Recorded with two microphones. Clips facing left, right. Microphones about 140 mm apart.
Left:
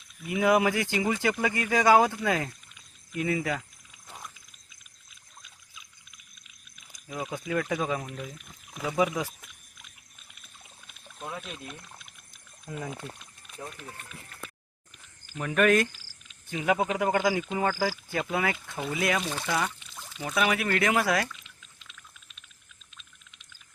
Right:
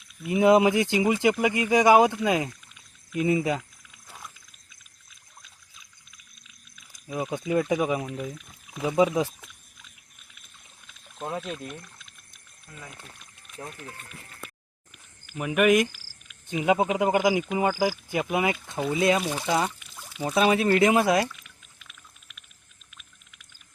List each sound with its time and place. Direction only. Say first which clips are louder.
0.3 s speech: right 5 dB; 25° right (ahead or behind)
7.1 s speech: right 5 dB; 20° right (ahead or behind)
11.2 s speech: right 6 dB; 30° right (ahead or behind)
15.4 s speech: right 2 dB; 10° right (ahead or behind)
19.2 s speech: right 4 dB; 15° right (ahead or behind)
19.9 s pour: right 3 dB; 5° right (ahead or behind)
20.2 s speech: right 6 dB; 30° right (ahead or behind)
21.4 s a sound: right 1 dB; 25° left (ahead or behind)